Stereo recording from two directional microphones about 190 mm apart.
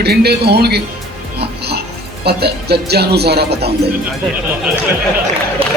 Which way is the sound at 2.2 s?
60° right (ahead or behind).